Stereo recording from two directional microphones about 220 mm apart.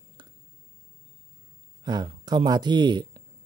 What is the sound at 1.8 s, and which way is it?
Speech, 20° right (ahead or behind).